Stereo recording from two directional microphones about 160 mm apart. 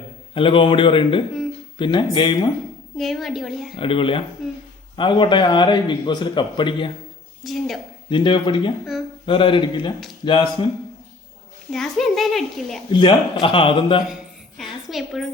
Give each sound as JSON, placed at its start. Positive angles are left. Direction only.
{"t": 0.3, "sound": "a man's voice", "side_deg": 35}
{"t": 3.0, "sound": "a child's voice", "side_deg": 0}
{"t": 3.8, "sound": "a man's voice", "side_deg": 35}
{"t": 4.4, "sound": "a child's voice", "side_deg": 0}
{"t": 4.9, "sound": "a man's voice", "side_deg": 30}
{"t": 7.4, "sound": "a child's voice", "side_deg": 0}
{"t": 8.1, "sound": "a man's voice", "side_deg": 30}
{"t": 11.7, "sound": "a child's voice", "side_deg": 0}
{"t": 12.9, "sound": "a man's voice", "side_deg": 30}
{"t": 14.8, "sound": "a child's voice", "side_deg": 0}